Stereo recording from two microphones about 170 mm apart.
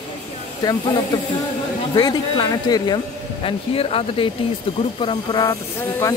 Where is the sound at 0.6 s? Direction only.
25° left (ahead or behind).